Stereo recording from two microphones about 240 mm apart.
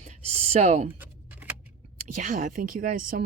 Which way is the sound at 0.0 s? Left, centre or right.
Right.